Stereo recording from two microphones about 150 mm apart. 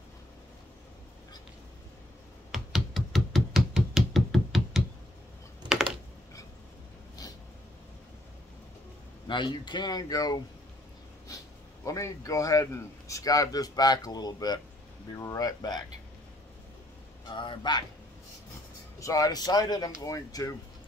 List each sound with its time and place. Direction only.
2.5 s a sound: centre (ahead or behind)
9.3 s speech: 30° left (ahead or behind)
11.2 s a sound: 20° left (ahead or behind)
13.1 s speech: 25° left (ahead or behind)
17.3 s speech: 30° left (ahead or behind)
18.9 s speech: 20° left (ahead or behind)